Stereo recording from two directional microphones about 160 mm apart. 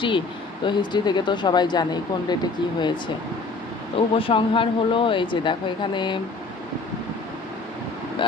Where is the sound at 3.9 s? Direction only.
35° left (ahead or behind).